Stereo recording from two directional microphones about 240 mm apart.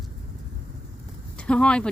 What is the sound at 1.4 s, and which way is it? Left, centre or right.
Speech, centre.